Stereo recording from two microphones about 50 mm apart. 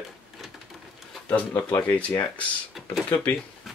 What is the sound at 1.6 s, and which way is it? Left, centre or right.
Speech, left.